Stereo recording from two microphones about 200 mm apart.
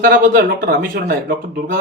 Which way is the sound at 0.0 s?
45° right (ahead or behind).